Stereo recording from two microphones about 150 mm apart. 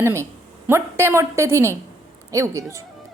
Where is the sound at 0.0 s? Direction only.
20° right (ahead or behind).